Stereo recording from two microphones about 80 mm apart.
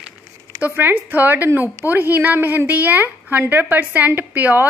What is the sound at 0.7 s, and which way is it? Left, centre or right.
A woman's voice, right.